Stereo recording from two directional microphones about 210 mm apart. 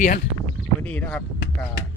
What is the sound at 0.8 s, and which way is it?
Speech, 5° left (ahead or behind).